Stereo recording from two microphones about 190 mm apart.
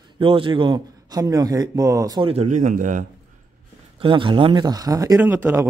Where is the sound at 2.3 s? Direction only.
35° right (ahead or behind).